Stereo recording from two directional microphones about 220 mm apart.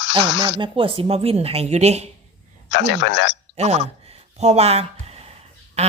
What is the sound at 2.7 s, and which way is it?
Speech, 55° left (ahead or behind).